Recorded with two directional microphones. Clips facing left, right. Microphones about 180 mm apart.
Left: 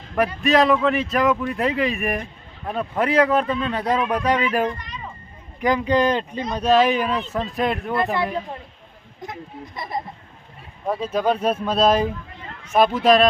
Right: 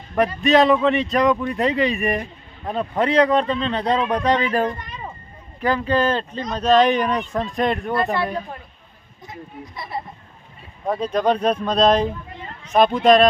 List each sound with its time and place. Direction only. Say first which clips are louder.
0.2 s speech: right 2 dB; centre (ahead or behind)
5.5 s speech: left 1 dB; 15° left (ahead or behind)
9.7 s speech: left 2 dB; 45° left (ahead or behind)
10.8 s speech: right 2 dB; 5° left (ahead or behind)